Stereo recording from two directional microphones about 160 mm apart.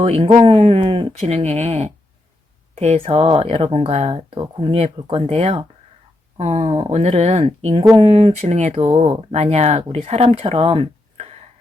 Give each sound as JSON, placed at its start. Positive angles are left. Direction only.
{"t": 0.0, "sound": "speech", "side_deg": -35}